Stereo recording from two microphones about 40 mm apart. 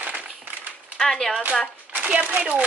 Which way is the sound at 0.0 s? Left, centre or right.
Right.